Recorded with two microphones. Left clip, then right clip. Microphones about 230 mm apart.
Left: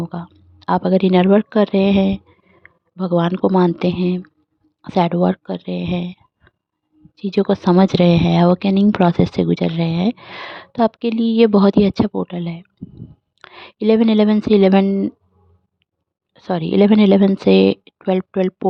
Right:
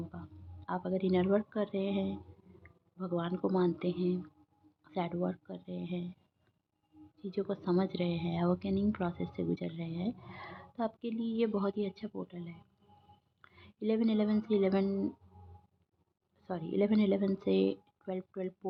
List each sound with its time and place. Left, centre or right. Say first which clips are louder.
0.1 s speech: left 19 dB; left
16.3 s speech: left 18 dB; left